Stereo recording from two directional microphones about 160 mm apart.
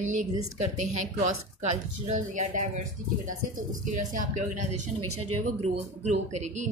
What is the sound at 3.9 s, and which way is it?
A woman's voice, 50° right (ahead or behind).